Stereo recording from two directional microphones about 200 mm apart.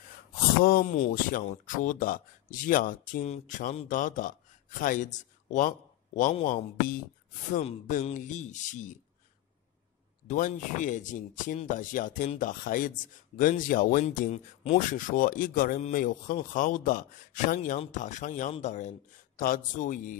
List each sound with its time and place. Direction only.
0.7 s speech: 45° left (ahead or behind)
10.2 s speech: 40° left (ahead or behind)